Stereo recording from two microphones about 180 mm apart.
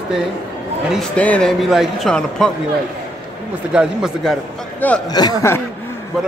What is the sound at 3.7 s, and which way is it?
Speech, 5° right (ahead or behind).